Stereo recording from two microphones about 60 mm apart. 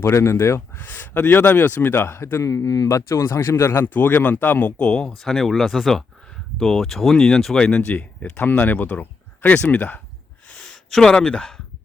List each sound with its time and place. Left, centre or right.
0.0 s speech: left
3.9 s speech: left
4.8 s speech: centre
7.6 s speech: centre
10.5 s speech: centre